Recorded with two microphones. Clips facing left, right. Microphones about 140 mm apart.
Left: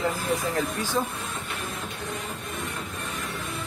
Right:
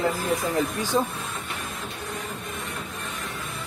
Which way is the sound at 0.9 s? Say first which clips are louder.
Right 4 dB; 20° right (ahead or behind).